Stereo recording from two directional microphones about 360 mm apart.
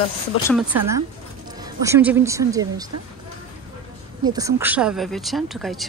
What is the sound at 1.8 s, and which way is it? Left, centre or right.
Speech, centre.